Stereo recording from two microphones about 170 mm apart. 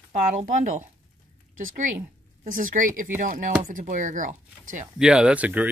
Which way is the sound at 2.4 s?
55° right (ahead or behind).